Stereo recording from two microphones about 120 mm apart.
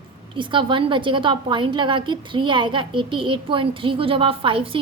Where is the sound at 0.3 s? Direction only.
40° right (ahead or behind).